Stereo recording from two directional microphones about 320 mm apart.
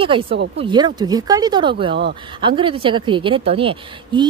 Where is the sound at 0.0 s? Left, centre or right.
Centre.